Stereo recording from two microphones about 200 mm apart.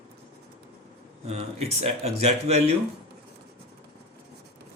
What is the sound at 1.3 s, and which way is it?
Speech, 30° right (ahead or behind).